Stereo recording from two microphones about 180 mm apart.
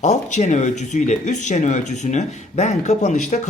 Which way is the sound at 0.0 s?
40° left (ahead or behind).